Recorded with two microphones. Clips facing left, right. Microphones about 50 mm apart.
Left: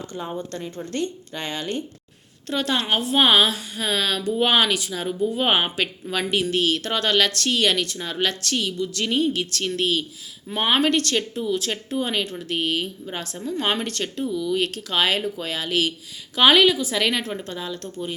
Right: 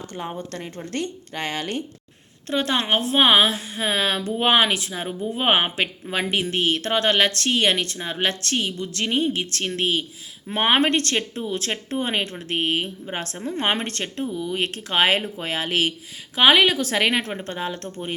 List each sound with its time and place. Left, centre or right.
0.1 s a woman's voice: right
2.5 s speech: right
11.3 s speech: right